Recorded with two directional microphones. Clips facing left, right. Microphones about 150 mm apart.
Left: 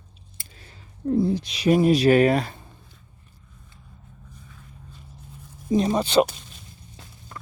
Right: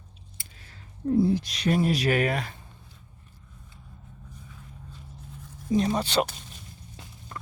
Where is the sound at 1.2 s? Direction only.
Centre (ahead or behind); by 2.6 s 35° left (ahead or behind).